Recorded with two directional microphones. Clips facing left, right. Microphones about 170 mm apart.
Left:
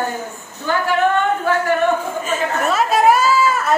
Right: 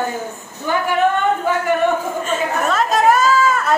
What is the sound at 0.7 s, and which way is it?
Speech, 15° right (ahead or behind).